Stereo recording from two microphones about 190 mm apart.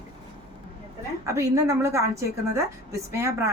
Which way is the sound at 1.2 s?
15° right (ahead or behind).